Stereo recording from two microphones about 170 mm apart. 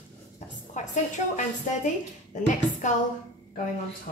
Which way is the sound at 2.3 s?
45° left (ahead or behind).